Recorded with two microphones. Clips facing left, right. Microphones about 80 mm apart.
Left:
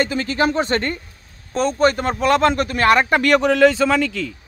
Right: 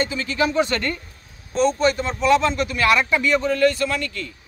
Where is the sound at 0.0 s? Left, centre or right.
Left.